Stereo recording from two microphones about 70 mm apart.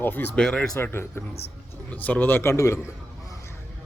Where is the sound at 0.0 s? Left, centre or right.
Left.